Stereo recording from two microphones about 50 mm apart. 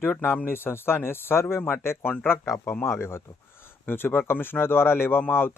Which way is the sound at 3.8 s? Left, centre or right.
Left.